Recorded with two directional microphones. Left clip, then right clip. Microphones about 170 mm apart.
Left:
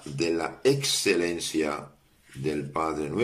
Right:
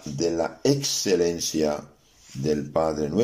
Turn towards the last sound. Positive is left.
turn(degrees=-35)  # may be behind; listen again after turning